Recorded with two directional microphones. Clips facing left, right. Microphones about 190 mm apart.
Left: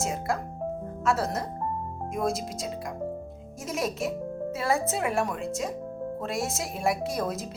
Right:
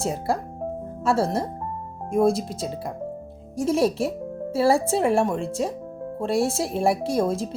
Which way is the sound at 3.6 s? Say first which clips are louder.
Right 9 dB; 30° right (ahead or behind).